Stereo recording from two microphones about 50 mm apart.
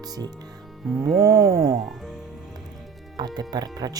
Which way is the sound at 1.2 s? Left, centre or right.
Right.